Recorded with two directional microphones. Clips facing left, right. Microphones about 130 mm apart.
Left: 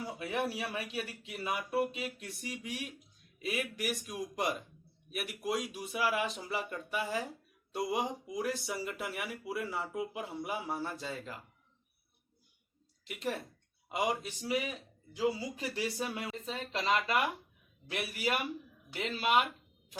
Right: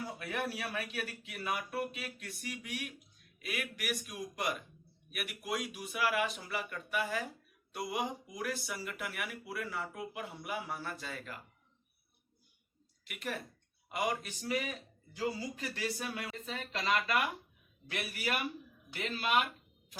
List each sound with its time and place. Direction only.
0.0 s speech: 20° left (ahead or behind)
13.1 s speech: 25° left (ahead or behind)